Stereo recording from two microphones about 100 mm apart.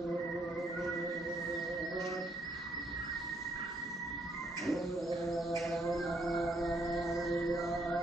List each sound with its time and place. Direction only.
4.6 s bird: centre (ahead or behind)
5.6 s music: centre (ahead or behind)